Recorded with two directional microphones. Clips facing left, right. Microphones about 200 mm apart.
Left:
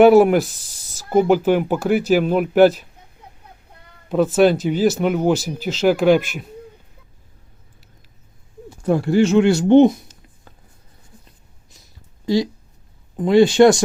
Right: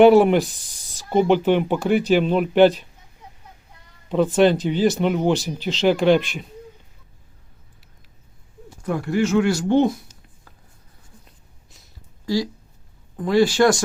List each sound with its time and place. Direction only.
0.0 s speech: 5° left (ahead or behind)
4.1 s speech: 5° left (ahead or behind)
8.8 s speech: 30° left (ahead or behind)
12.2 s speech: 20° left (ahead or behind)